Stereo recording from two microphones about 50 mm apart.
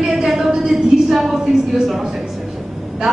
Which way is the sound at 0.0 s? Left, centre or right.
Centre.